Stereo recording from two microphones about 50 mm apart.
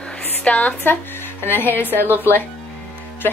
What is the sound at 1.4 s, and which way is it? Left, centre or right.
Speech, left.